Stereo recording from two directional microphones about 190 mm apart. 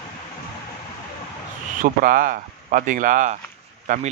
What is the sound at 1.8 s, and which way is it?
Speech, 45° right (ahead or behind).